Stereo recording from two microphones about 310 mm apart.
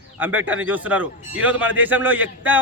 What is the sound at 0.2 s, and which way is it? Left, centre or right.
Speech, centre.